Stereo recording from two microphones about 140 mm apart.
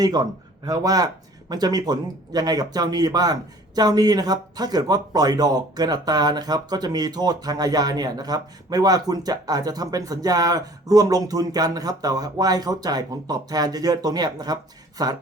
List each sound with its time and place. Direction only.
0.0 s speech: 25° right (ahead or behind)